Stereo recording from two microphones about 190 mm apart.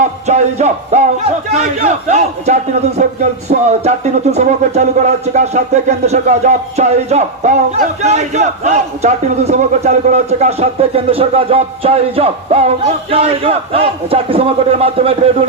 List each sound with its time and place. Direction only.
0.3 s speech: 35° right (ahead or behind)